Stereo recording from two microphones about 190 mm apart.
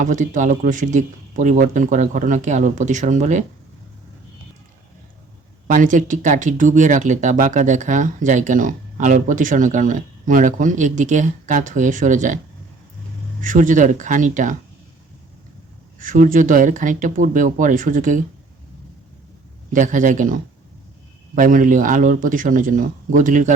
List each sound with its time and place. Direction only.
0.0 s speech: 40° right (ahead or behind)
5.6 s speech: 40° right (ahead or behind)
13.4 s speech: 45° right (ahead or behind)
16.0 s speech: 45° right (ahead or behind)
19.7 s speech: 40° right (ahead or behind)